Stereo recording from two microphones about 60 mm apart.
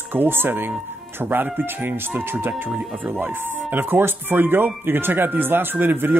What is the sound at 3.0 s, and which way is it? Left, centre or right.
Speech, right.